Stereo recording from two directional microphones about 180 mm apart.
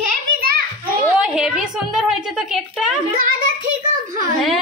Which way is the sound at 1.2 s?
5° right (ahead or behind).